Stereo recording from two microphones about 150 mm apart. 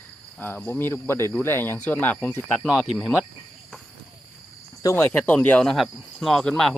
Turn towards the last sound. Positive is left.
turn(degrees=5)  # may be behind; listen again after turning